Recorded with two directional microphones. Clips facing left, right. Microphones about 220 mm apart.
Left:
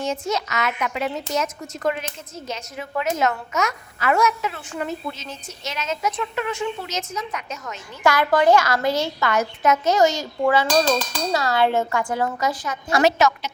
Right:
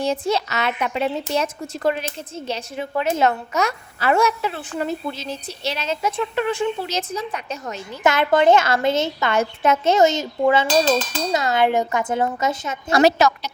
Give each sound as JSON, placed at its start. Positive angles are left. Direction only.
{"t": 0.0, "sound": "a woman's voice", "side_deg": -30}
{"t": 12.9, "sound": "a woman's voice", "side_deg": -35}